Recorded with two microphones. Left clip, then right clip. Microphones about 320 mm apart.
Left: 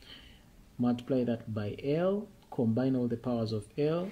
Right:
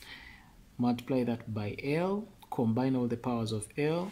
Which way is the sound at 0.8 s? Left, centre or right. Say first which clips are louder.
Even; centre.